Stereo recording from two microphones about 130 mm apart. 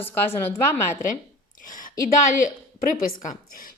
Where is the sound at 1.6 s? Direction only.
90° left.